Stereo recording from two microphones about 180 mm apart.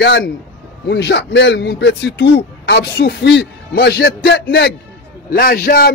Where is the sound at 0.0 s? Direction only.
70° left (ahead or behind).